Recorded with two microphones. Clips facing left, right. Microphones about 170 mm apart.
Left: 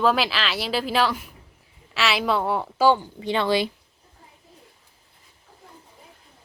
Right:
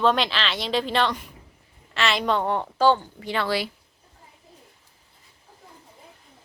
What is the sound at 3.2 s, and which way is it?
Speech, 20° left (ahead or behind).